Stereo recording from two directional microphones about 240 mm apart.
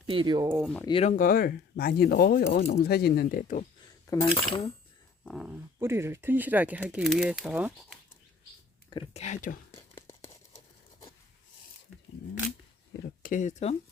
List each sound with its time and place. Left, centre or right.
0.1 s speech: centre
0.5 s speech: centre
0.8 s speech: left
1.1 s speech: left
4.0 s cutlery: centre
5.2 s speech: centre
8.9 s speech: left
9.7 s a sound: centre
13.2 s speech: left